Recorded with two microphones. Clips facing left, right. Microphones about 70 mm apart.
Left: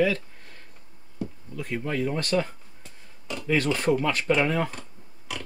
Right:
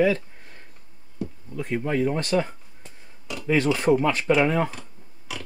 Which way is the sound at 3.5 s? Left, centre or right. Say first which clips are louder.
Right 3 dB; centre.